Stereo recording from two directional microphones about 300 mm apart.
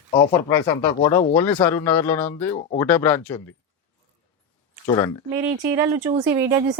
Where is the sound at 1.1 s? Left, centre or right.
Centre.